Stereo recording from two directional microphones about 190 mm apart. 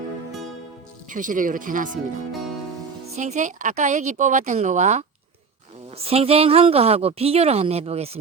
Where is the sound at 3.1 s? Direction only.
40° right (ahead or behind).